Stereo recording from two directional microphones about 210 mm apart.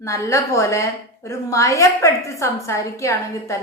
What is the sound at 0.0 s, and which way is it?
A woman's voice, 15° left (ahead or behind).